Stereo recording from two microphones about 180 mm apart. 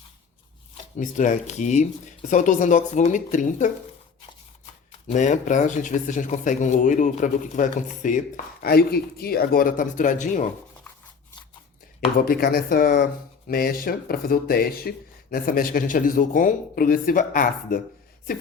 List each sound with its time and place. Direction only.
0.9 s speech: 45° left (ahead or behind)
4.9 s speech: 45° left (ahead or behind)
8.6 s speech: 60° left (ahead or behind); by 10.5 s 45° left (ahead or behind)
12.1 s speech: 55° left (ahead or behind)